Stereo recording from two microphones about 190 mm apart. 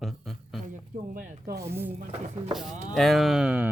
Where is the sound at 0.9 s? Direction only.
45° right (ahead or behind).